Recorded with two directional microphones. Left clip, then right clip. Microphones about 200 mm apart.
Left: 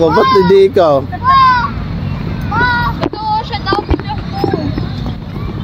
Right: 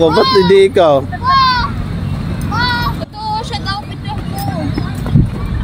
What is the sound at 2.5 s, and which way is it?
Vehicle, 65° right (ahead or behind).